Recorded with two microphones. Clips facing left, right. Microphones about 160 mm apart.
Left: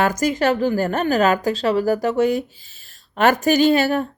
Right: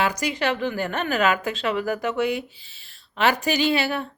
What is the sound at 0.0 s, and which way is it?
A woman's voice, 45° left (ahead or behind).